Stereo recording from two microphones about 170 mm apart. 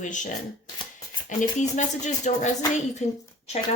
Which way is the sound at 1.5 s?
45° left (ahead or behind).